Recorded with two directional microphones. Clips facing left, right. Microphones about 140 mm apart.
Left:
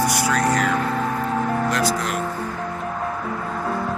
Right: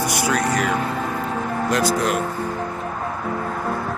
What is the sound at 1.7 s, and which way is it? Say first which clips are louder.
Speech: right 3 dB; 20° right (ahead or behind).